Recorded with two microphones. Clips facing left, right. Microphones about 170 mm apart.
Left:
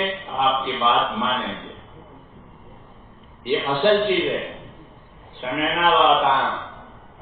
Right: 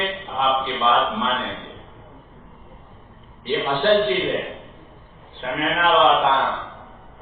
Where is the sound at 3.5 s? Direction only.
15° left (ahead or behind).